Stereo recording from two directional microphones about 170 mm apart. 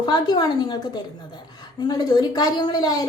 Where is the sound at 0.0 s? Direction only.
25° left (ahead or behind).